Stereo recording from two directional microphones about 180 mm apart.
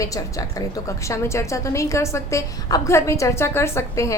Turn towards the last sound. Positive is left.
turn(degrees=15)  # may be behind; listen again after turning